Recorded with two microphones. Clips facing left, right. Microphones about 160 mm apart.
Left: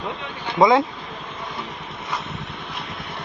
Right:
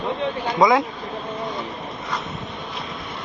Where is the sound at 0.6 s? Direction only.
25° left (ahead or behind).